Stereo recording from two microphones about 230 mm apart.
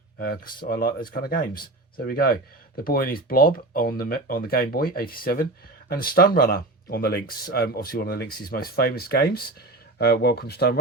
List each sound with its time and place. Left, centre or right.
0.2 s speech: left